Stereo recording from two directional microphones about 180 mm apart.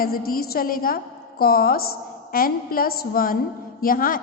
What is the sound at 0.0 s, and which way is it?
A woman's voice, 55° left (ahead or behind).